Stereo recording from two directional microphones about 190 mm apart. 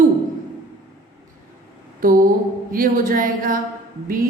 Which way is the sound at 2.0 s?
45° right (ahead or behind).